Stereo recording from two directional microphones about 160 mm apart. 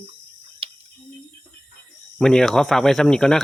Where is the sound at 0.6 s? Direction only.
35° right (ahead or behind).